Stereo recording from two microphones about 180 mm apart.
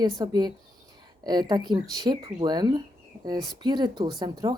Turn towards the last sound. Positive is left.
turn(degrees=-25)  # may be behind; listen again after turning